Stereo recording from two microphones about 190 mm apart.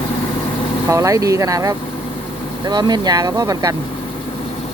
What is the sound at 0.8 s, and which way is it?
Speech, 15° right (ahead or behind).